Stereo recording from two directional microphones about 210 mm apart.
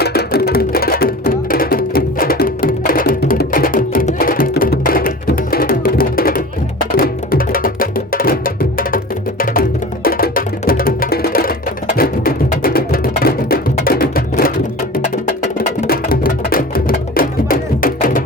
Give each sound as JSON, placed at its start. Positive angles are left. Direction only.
{"t": 0.0, "sound": "music", "side_deg": 50}
{"t": 15.5, "sound": "music", "side_deg": 45}